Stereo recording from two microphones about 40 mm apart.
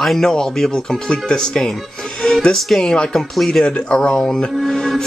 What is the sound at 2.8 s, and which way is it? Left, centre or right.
Speech, left.